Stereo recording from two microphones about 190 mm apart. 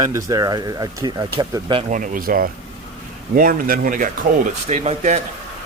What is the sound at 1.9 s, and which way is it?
A man's voice, 45° right (ahead or behind).